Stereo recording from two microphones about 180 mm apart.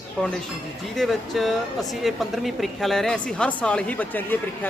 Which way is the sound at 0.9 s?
Centre (ahead or behind).